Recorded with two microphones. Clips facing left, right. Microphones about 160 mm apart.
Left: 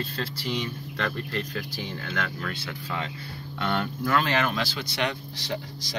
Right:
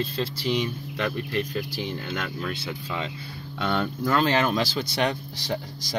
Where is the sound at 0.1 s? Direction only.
20° right (ahead or behind); by 5.1 s 40° right (ahead or behind).